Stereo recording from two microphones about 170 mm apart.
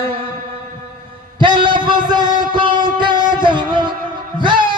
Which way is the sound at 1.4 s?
25° right (ahead or behind).